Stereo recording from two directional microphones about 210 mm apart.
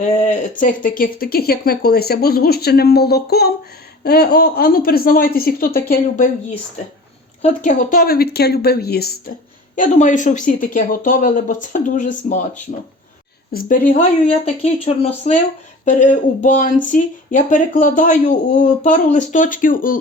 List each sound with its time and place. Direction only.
0.0 s speech: 35° left (ahead or behind)
7.4 s speech: 35° left (ahead or behind)
9.7 s speech: 35° left (ahead or behind)
13.5 s speech: 45° left (ahead or behind)